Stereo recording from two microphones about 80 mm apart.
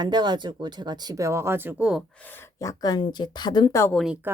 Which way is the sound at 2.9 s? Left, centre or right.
Left.